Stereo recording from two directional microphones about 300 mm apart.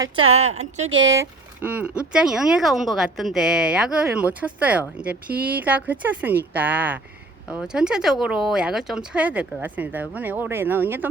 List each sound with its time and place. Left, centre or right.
0.3 s a woman's voice: right
0.9 s speech: right
1.1 s a woman's voice: centre